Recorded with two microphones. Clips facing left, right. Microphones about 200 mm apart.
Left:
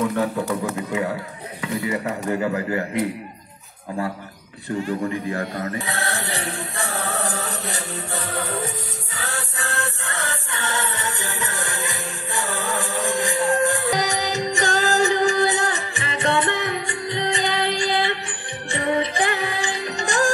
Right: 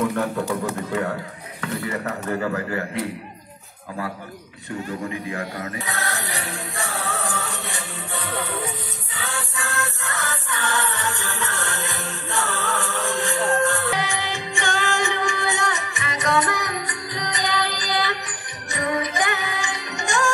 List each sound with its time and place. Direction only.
0.0 s a man's voice: centre (ahead or behind)
1.6 s speech: 10° left (ahead or behind)
5.3 s music: 35° left (ahead or behind); by 13.9 s 15° left (ahead or behind)
13.9 s music: 40° left (ahead or behind)